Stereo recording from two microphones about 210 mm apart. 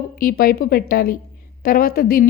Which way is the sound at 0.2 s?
45° left (ahead or behind).